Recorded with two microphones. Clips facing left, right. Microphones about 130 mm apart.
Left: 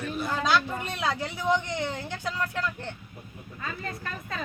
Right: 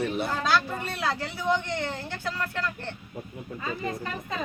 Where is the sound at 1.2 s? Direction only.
15° left (ahead or behind).